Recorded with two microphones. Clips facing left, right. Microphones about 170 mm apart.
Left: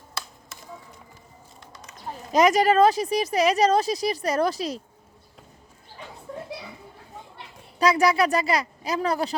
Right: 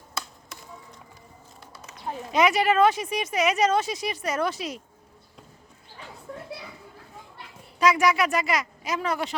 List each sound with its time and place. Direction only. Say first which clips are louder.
1.7 s a sound: right 3 dB; 10° right (ahead or behind)
2.3 s speech: left 3 dB; 40° left (ahead or behind)
7.8 s speech: left 1 dB; 35° left (ahead or behind)